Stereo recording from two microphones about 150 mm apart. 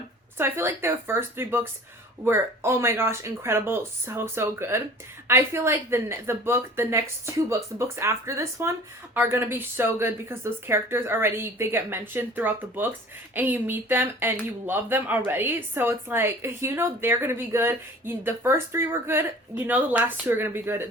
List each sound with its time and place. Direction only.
0.3 s speech: 15° right (ahead or behind)